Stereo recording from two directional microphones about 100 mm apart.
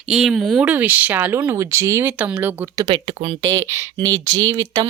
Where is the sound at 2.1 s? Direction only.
15° right (ahead or behind).